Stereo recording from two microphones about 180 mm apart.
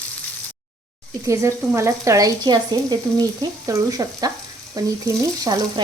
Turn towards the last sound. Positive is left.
turn(degrees=-20)  # may be behind; listen again after turning